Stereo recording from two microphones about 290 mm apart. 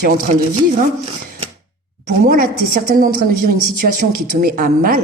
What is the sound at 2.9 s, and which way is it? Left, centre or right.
Speech, right.